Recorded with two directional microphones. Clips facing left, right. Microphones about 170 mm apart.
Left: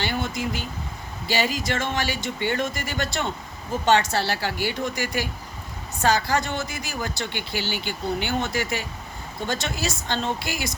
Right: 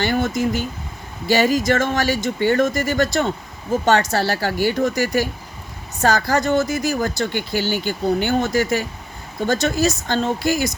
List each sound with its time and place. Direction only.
0.0 s speech: 45° right (ahead or behind)